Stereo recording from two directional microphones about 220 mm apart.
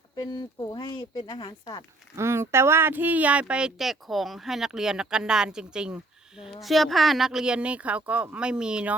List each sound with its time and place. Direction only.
0.2 s speech: 20° left (ahead or behind)
2.1 s speech: 10° right (ahead or behind)